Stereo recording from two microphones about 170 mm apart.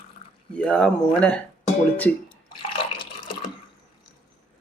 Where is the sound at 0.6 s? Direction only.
5° left (ahead or behind).